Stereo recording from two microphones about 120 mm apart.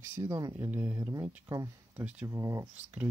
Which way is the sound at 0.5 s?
15° right (ahead or behind).